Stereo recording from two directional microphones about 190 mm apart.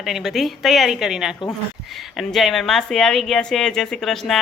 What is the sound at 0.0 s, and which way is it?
A woman's voice, centre (ahead or behind).